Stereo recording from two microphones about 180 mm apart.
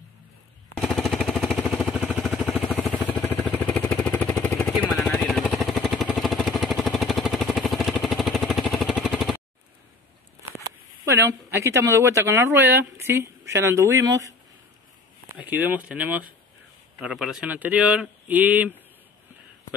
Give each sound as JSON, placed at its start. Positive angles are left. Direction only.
{"t": 0.7, "sound": "a sound", "side_deg": 0}
{"t": 2.2, "sound": "vehicle", "side_deg": 0}
{"t": 2.7, "sound": "vehicle", "side_deg": 10}
{"t": 11.1, "sound": "speech", "side_deg": -15}
{"t": 15.2, "sound": "speech", "side_deg": -10}